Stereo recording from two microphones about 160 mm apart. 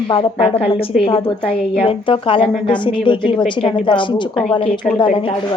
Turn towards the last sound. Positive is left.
turn(degrees=5)  # may be behind; listen again after turning